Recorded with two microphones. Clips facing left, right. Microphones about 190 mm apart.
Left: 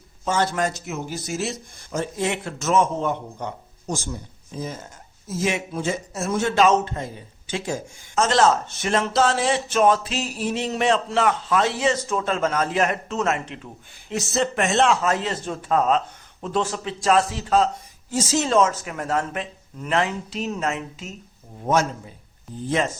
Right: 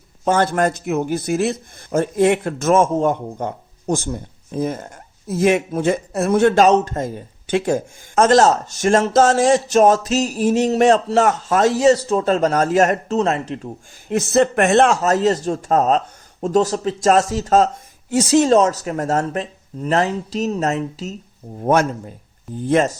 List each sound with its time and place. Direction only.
0.3 s a man's voice: 55° right (ahead or behind); by 13.7 s 40° right (ahead or behind)
14.1 s a man's voice: 55° right (ahead or behind)
18.1 s a man's voice: 65° right (ahead or behind)
18.4 s speech: 40° right (ahead or behind)
21.6 s a man's voice: 55° right (ahead or behind)